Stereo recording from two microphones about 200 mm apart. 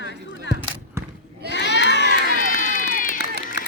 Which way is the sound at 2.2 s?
45° left (ahead or behind).